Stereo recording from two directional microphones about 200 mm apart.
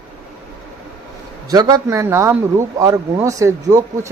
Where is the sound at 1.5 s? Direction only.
20° right (ahead or behind).